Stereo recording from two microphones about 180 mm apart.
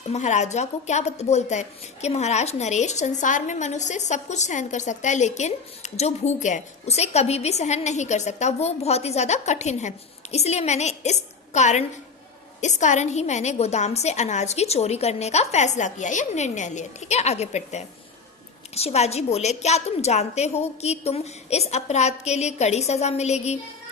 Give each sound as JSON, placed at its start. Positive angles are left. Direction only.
{"t": 0.1, "sound": "a woman's voice", "side_deg": 40}